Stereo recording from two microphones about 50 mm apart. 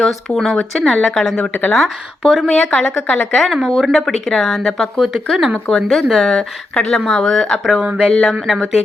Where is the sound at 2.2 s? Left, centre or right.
Centre.